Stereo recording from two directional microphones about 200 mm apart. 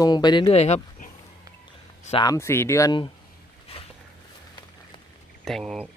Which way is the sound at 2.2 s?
15° left (ahead or behind).